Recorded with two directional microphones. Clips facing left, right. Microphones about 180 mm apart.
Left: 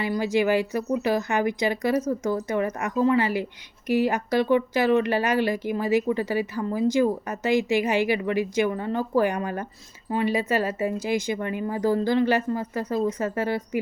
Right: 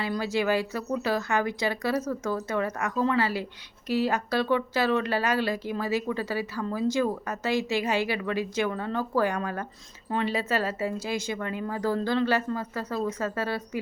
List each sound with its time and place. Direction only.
0.0 s speech: 15° left (ahead or behind)